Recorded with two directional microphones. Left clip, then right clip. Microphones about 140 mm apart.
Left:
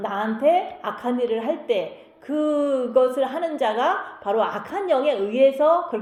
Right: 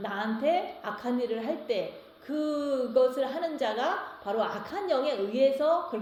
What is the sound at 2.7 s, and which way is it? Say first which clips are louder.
Speech: left 3 dB; 15° left (ahead or behind).